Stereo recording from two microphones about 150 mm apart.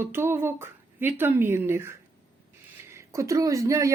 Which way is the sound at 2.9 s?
20° right (ahead or behind).